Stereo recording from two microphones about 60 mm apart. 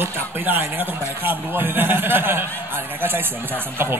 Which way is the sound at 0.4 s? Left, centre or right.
Right.